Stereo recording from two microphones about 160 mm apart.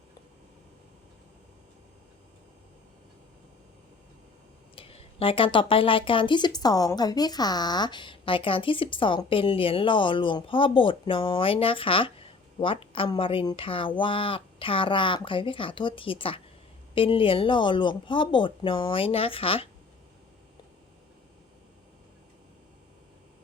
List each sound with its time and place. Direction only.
4.7 s speech: 35° left (ahead or behind)